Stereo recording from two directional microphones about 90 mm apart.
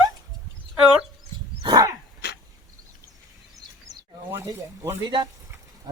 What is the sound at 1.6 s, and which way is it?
Dog, 45° right (ahead or behind).